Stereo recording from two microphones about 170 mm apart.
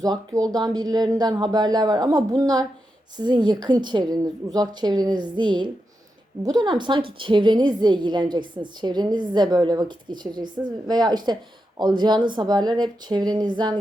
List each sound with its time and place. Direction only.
0.0 s a woman's voice: 20° right (ahead or behind)